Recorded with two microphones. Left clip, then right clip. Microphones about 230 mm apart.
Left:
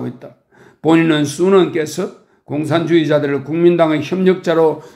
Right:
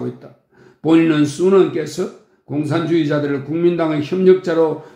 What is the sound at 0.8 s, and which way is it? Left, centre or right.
A man's voice, left.